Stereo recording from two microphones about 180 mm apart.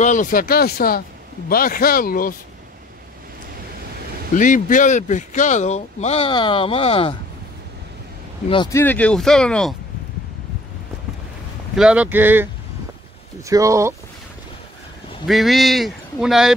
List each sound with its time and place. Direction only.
0.0 s speech: 45° left (ahead or behind)
4.4 s speech: 45° left (ahead or behind)
8.6 s speech: 15° left (ahead or behind)
11.7 s speech: 5° right (ahead or behind)
15.2 s speech: centre (ahead or behind)